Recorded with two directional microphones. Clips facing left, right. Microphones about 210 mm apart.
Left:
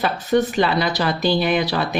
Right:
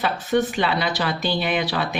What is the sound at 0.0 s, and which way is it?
Speech, 40° left (ahead or behind).